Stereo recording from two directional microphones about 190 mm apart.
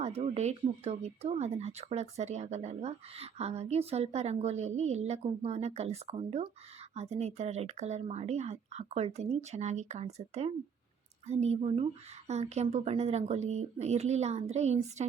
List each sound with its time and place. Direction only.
0.0 s speech: 35° right (ahead or behind)